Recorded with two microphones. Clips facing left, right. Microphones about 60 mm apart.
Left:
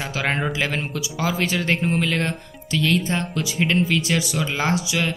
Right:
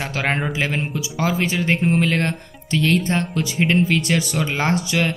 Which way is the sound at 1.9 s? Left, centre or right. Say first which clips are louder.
Right 3 dB; right.